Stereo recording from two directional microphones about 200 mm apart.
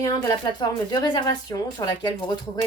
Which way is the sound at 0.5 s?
20° left (ahead or behind).